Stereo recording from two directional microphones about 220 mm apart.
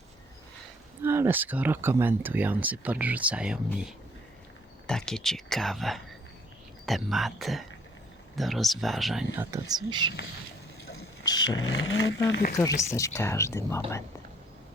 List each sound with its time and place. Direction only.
1.0 s speech: 10° right (ahead or behind)
9.3 s speech: 10° right (ahead or behind)
11.3 s dog: 20° left (ahead or behind)
11.6 s vehicle: 65° left (ahead or behind)
12.5 s speech: 15° left (ahead or behind)